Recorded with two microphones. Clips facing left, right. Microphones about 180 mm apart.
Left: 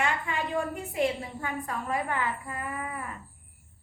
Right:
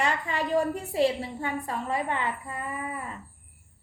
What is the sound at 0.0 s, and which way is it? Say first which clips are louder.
A woman's voice: right 2 dB; 35° right (ahead or behind).